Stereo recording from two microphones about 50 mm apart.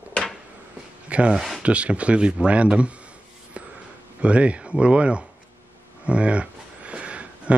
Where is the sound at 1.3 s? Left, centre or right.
Centre.